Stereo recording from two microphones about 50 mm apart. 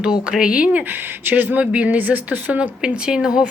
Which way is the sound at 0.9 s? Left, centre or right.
Right.